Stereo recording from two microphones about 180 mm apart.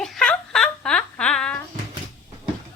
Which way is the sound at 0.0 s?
5° left (ahead or behind).